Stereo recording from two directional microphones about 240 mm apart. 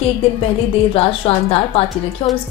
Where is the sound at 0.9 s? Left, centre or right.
Left.